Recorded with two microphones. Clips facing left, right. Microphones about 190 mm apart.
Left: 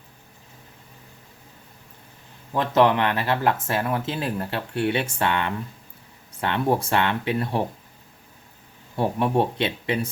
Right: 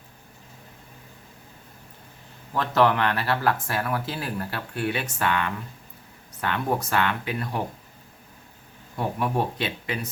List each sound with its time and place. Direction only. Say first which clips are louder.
2.5 s speech: left 2 dB; 20° left (ahead or behind)
9.0 s speech: left 4 dB; 25° left (ahead or behind)